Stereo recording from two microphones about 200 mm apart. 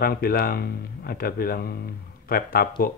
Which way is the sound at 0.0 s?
50° left (ahead or behind).